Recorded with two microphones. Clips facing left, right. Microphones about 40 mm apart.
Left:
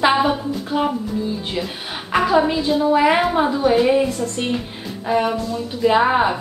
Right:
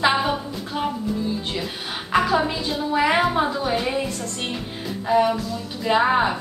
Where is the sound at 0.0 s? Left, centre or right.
Centre.